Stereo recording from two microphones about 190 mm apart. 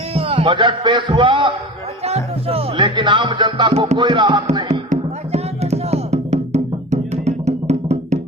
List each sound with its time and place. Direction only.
0.1 s a man's voice: 30° right (ahead or behind)
2.0 s music: 30° right (ahead or behind)